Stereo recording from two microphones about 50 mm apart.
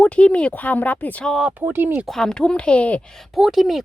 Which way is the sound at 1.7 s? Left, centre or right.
Right.